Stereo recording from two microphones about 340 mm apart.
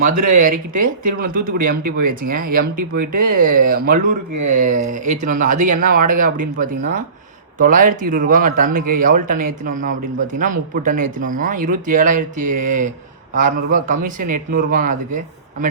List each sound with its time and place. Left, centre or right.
0.3 s speech: right